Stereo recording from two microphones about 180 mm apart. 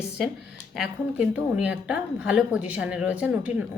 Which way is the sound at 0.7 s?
5° right (ahead or behind).